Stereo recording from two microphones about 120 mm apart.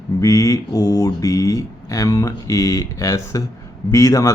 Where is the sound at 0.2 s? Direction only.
25° left (ahead or behind).